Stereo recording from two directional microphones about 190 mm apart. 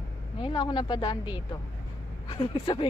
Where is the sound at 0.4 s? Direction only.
25° left (ahead or behind).